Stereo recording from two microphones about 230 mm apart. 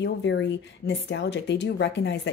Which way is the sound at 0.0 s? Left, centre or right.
Left.